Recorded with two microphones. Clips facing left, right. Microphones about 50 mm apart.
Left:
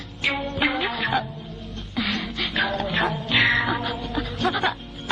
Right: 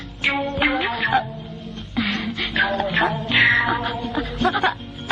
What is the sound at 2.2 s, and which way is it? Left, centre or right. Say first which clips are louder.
Music: right 3 dB; centre.